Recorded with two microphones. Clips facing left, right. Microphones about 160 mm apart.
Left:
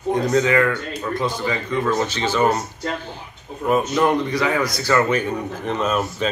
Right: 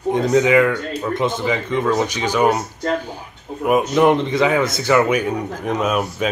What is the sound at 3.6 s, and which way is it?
Speech, 15° right (ahead or behind).